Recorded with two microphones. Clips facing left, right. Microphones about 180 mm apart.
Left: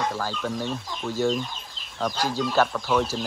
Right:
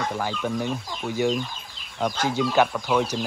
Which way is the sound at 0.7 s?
15° right (ahead or behind).